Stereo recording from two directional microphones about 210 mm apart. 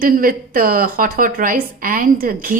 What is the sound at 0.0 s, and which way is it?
A woman's voice, 45° right (ahead or behind).